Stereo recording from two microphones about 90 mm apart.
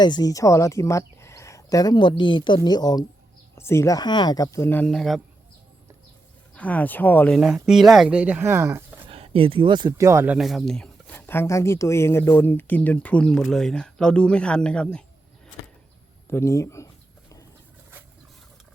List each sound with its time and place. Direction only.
0.0 s speech: 50° left (ahead or behind)
2.6 s speech: 50° left (ahead or behind)
3.5 s speech: 30° left (ahead or behind)
3.9 s speech: 55° left (ahead or behind)
4.5 s speech: 25° left (ahead or behind)
4.9 s a man's voice: centre (ahead or behind)
6.5 s speech: 15° left (ahead or behind)
7.4 s speech: 5° right (ahead or behind)
8.4 s speech: 30° right (ahead or behind)
9.0 s speech: 90° right; by 9.9 s 60° right (ahead or behind)
10.0 s speech: 30° right (ahead or behind)
10.3 s speech: centre (ahead or behind)
16.2 s speech: 30° left (ahead or behind)